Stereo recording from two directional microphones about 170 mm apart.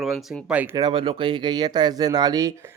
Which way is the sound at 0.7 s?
25° right (ahead or behind).